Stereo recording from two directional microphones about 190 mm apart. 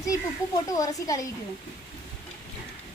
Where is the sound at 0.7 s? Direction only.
20° left (ahead or behind).